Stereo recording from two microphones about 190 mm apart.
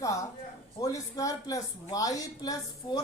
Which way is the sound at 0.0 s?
15° left (ahead or behind).